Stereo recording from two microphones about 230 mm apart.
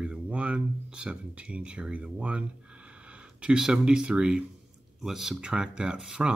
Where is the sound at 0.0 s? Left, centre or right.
Centre.